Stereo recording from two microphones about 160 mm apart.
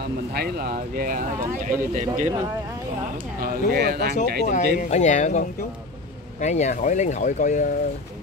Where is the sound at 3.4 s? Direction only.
75° right (ahead or behind).